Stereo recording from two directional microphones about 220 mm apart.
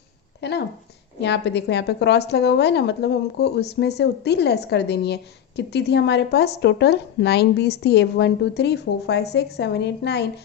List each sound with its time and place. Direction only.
0.4 s a woman's voice: 50° left (ahead or behind)